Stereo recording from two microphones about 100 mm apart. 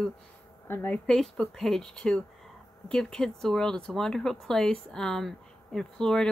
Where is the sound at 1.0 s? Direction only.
5° left (ahead or behind).